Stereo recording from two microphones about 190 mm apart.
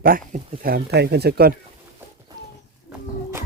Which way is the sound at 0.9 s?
60° right (ahead or behind).